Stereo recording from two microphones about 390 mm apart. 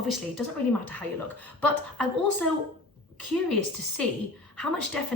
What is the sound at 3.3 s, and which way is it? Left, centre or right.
Speech, centre.